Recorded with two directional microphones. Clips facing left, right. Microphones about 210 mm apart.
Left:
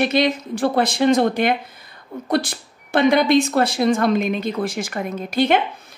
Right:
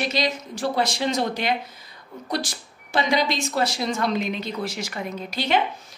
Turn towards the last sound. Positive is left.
turn(degrees=55)  # may be behind; listen again after turning